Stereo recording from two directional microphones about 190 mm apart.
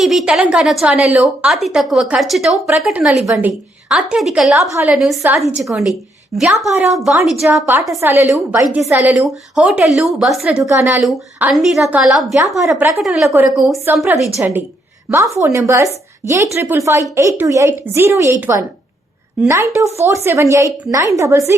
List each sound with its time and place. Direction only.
0.0 s a woman's voice: centre (ahead or behind)
4.6 s a woman's voice: 15° right (ahead or behind)
4.9 s a woman's voice: centre (ahead or behind)
7.5 s a woman's voice: 10° right (ahead or behind)
10.6 s a woman's voice: 15° right (ahead or behind)
11.0 s a woman's voice: 5° right (ahead or behind)